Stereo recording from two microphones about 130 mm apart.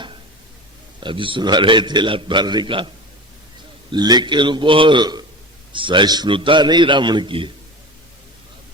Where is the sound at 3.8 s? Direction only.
35° right (ahead or behind).